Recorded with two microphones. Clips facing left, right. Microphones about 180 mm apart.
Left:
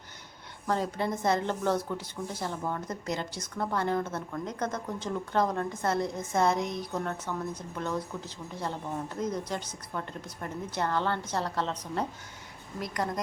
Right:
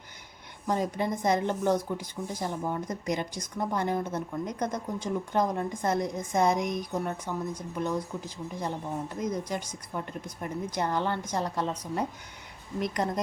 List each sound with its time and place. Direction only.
0.7 s speech: 15° right (ahead or behind)
12.8 s speech: 20° right (ahead or behind)